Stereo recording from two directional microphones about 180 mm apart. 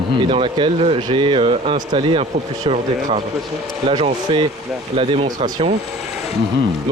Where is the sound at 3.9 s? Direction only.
25° right (ahead or behind).